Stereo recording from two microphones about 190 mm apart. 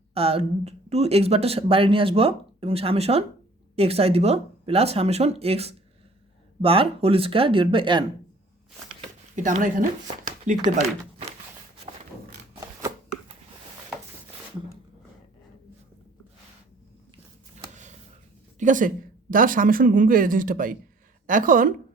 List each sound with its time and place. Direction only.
0.1 s speech: 30° right (ahead or behind)
9.0 s a sound: 40° right (ahead or behind)
18.6 s a woman's voice: 45° right (ahead or behind)